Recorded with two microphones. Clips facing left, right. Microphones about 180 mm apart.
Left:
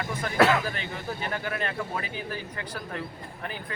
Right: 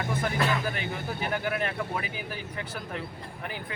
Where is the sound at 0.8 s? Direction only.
10° right (ahead or behind).